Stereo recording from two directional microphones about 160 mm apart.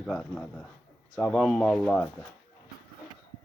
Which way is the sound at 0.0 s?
Centre (ahead or behind).